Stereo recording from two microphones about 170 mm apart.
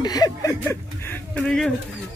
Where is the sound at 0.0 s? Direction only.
20° left (ahead or behind).